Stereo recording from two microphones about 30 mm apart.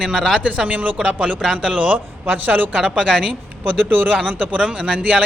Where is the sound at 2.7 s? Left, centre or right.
Right.